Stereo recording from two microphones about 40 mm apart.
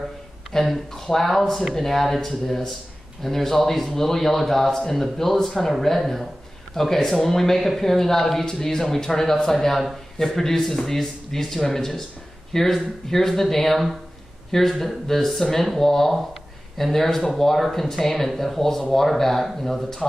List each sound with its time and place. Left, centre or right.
0.5 s speech: centre